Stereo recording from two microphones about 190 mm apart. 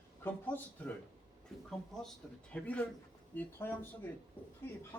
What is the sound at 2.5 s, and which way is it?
Speech, 5° left (ahead or behind).